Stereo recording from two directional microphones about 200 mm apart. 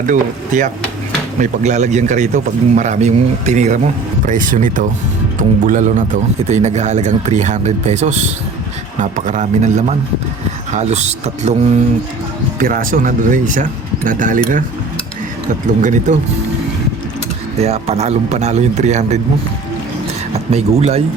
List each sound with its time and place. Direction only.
0.1 s a man's voice: 40° right (ahead or behind)
12.5 s a man's voice: 45° right (ahead or behind)
15.6 s a man's voice: 40° right (ahead or behind)
17.6 s a man's voice: 30° right (ahead or behind)
20.3 s speech: 30° right (ahead or behind)